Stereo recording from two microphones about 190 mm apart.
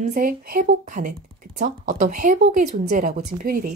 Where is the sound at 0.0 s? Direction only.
50° right (ahead or behind).